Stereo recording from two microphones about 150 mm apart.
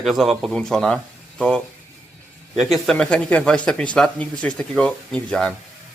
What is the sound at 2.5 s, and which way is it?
Speech, centre (ahead or behind).